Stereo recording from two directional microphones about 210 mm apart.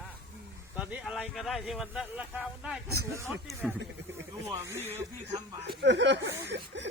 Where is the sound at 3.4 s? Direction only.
5° right (ahead or behind).